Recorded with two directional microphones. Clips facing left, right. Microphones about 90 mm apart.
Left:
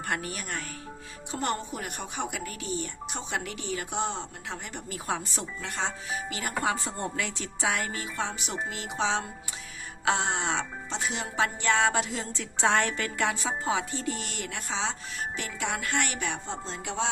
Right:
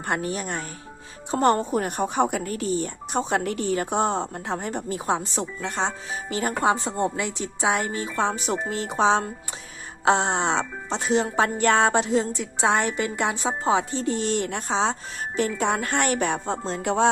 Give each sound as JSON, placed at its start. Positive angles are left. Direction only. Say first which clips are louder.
{"t": 0.0, "sound": "speech", "louder": "right 6 dB", "side_deg": -30}
{"t": 1.3, "sound": "speech", "louder": "right 11 dB", "side_deg": -40}
{"t": 15.4, "sound": "music", "louder": "right 12 dB", "side_deg": -35}